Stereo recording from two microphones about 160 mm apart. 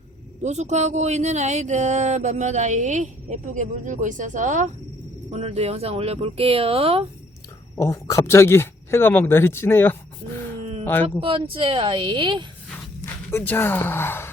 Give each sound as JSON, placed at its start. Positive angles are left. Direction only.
{"t": 0.4, "sound": "speech", "side_deg": -45}
{"t": 5.3, "sound": "speech", "side_deg": -40}
{"t": 7.8, "sound": "speech", "side_deg": 20}
{"t": 11.2, "sound": "speech", "side_deg": -35}
{"t": 13.0, "sound": "speech", "side_deg": 15}